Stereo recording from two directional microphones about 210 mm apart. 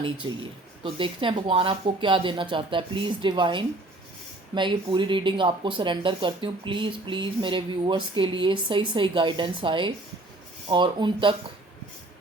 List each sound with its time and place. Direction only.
0.2 s speech: 20° right (ahead or behind)